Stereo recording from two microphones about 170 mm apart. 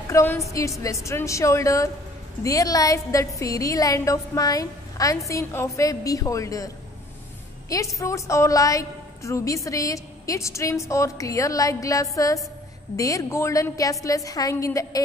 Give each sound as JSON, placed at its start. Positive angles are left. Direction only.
{"t": 0.1, "sound": "a woman's voice", "side_deg": 15}
{"t": 7.7, "sound": "a woman's voice", "side_deg": 20}